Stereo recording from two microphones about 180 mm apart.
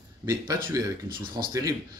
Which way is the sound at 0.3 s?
20° right (ahead or behind).